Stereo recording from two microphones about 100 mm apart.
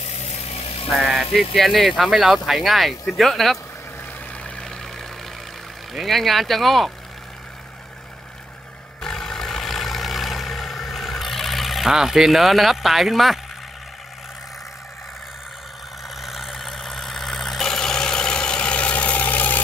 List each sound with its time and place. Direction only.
0.3 s vehicle: 90° left
0.9 s speech: centre (ahead or behind)
4.3 s a sound: 10° left (ahead or behind)
5.9 s speech: centre (ahead or behind)
9.0 s vehicle: 5° left (ahead or behind)
16.2 s vehicle: centre (ahead or behind); by 19.6 s 15° left (ahead or behind)